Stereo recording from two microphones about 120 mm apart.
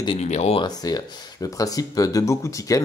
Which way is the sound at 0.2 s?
65° left (ahead or behind).